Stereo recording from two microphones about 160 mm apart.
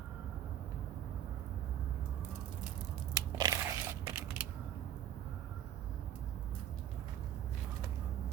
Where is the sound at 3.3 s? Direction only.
25° right (ahead or behind).